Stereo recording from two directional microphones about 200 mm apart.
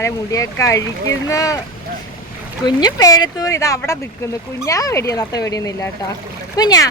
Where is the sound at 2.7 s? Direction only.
20° left (ahead or behind).